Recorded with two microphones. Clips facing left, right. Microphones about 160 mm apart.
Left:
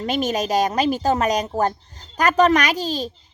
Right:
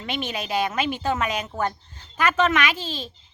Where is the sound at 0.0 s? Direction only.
40° left (ahead or behind).